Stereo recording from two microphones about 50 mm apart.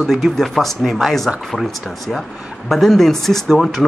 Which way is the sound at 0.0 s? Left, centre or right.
Centre.